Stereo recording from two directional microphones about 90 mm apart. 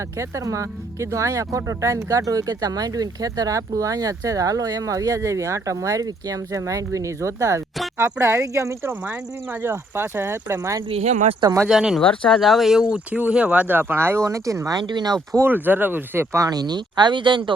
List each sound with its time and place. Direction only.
0.2 s speech: 35° right (ahead or behind)
10.9 s speech: 90° right
11.6 s speech: 5° right (ahead or behind)
11.9 s speech: 10° left (ahead or behind); by 14.8 s 35° right (ahead or behind)
14.8 s speech: 55° right (ahead or behind)
15.4 s speech: 20° right (ahead or behind)
16.4 s speech: 45° right (ahead or behind); by 17.5 s 65° right (ahead or behind)